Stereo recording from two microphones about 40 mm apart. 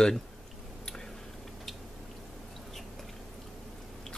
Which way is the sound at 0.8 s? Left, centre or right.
Centre.